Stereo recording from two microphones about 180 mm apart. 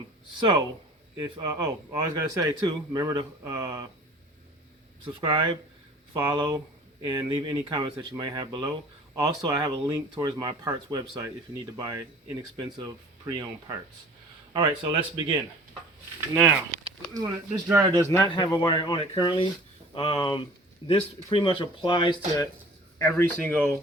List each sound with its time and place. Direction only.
0.3 s speech: 25° right (ahead or behind)
5.3 s speech: 25° right (ahead or behind)
16.3 s speech: 10° right (ahead or behind)
18.0 s speech: 15° left (ahead or behind)
18.3 s speech: 25° left (ahead or behind)
23.0 s speech: 15° left (ahead or behind)